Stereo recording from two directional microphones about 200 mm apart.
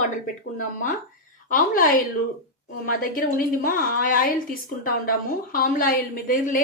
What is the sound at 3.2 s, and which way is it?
A woman's voice, 45° left (ahead or behind).